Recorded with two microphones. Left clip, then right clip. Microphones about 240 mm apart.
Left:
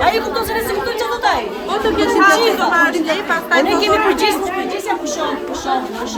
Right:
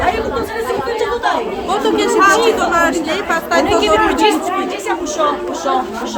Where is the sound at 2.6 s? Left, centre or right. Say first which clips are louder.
Even; right.